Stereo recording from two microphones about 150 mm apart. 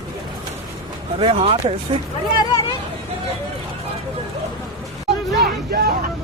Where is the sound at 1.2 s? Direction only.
40° right (ahead or behind).